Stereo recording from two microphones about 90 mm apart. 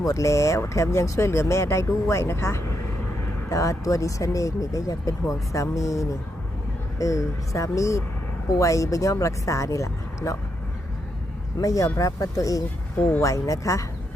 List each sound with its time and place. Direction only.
0.0 s speech: 35° left (ahead or behind)
11.6 s speech: 35° left (ahead or behind)
13.0 s speech: 20° left (ahead or behind)
13.2 s speech: 35° left (ahead or behind)